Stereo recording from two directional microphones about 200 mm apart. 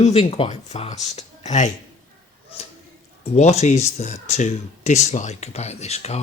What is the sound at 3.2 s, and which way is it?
Speech, 35° left (ahead or behind).